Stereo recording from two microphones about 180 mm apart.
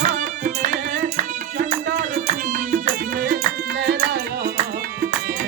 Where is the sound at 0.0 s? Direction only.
45° right (ahead or behind).